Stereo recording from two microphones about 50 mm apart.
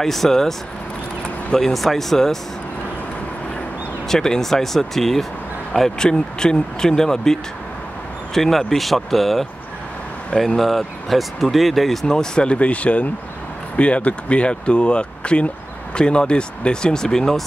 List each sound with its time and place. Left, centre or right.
0.0 s speech: centre
4.1 s speech: centre
6.0 s speech: centre
8.4 s speech: centre
10.6 s speech: centre